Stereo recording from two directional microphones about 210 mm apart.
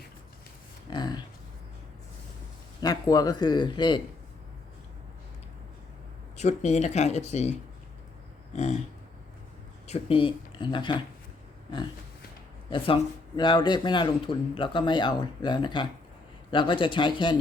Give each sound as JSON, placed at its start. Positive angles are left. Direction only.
{"t": 0.9, "sound": "speech", "side_deg": 20}
{"t": 2.8, "sound": "a man's voice", "side_deg": 15}
{"t": 6.3, "sound": "speech", "side_deg": 30}
{"t": 9.8, "sound": "speech", "side_deg": 30}
{"t": 12.7, "sound": "a man's voice", "side_deg": 25}